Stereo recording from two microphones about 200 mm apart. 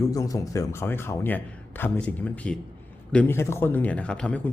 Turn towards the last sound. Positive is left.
turn(degrees=5)  # may be behind; listen again after turning